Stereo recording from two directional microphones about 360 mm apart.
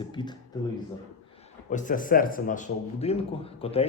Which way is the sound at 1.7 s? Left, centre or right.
Left.